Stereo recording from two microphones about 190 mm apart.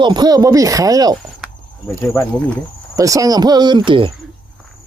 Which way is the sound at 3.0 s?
15° right (ahead or behind).